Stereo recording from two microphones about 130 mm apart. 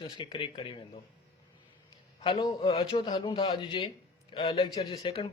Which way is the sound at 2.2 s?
40° left (ahead or behind).